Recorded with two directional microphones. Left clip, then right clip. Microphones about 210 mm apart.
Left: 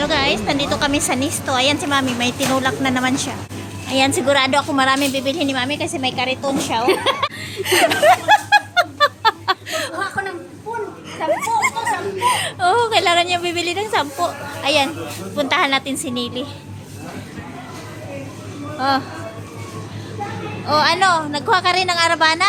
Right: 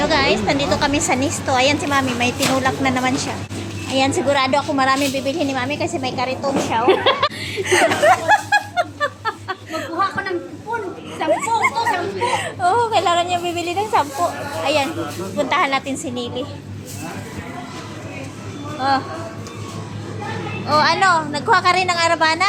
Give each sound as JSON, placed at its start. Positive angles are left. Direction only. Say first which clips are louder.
{"t": 0.0, "sound": "a woman's voice", "louder": "right 1 dB", "side_deg": 10}
{"t": 6.8, "sound": "speech", "louder": "right 3 dB", "side_deg": 40}
{"t": 7.6, "sound": "snicker", "louder": "left 1 dB", "side_deg": 20}
{"t": 11.3, "sound": "children playing", "louder": "even", "side_deg": 15}
{"t": 12.4, "sound": "a woman's voice", "louder": "left 1 dB", "side_deg": 30}
{"t": 18.8, "sound": "a man's voice", "louder": "even", "side_deg": 25}
{"t": 20.7, "sound": "a woman's voice", "louder": "even", "side_deg": 20}